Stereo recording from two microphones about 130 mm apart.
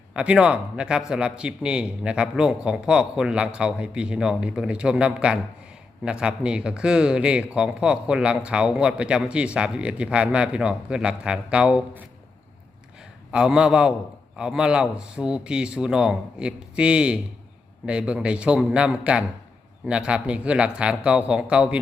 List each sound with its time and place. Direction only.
0.1 s speech: 10° right (ahead or behind)
13.3 s speech: 5° right (ahead or behind)